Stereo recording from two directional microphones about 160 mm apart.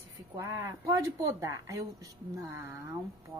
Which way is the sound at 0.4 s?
20° right (ahead or behind).